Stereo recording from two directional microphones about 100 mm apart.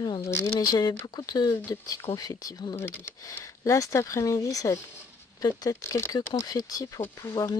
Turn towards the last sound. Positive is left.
turn(degrees=30)  # may be behind; listen again after turning